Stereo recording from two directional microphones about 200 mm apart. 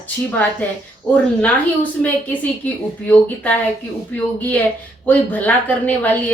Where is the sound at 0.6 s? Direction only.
5° left (ahead or behind).